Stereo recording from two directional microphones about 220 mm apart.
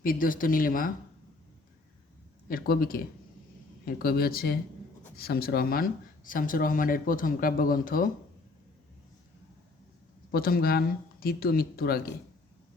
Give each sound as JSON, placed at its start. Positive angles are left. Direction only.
{"t": 0.0, "sound": "speech", "side_deg": 40}
{"t": 2.5, "sound": "speech", "side_deg": 40}
{"t": 10.3, "sound": "speech", "side_deg": 40}